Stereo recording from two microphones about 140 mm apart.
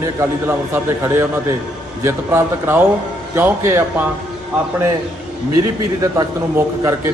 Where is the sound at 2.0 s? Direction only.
15° right (ahead or behind).